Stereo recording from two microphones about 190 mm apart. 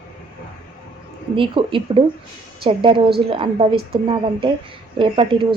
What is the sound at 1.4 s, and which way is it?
Speech, 25° right (ahead or behind).